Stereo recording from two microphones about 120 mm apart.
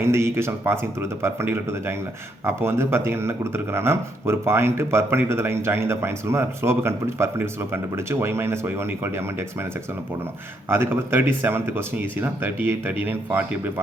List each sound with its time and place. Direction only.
0.0 s speech: 20° right (ahead or behind)
10.7 s speech: 20° right (ahead or behind)